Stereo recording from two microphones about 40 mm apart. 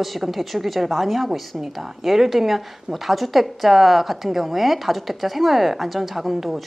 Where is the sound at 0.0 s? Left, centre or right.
Centre.